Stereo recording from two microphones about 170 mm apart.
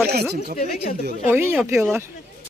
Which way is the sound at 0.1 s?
70° right (ahead or behind).